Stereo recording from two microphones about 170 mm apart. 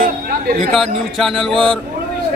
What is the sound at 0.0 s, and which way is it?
Chatter, 60° right (ahead or behind).